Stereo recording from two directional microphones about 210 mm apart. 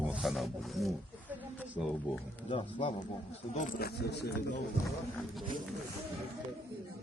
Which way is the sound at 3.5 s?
40° left (ahead or behind).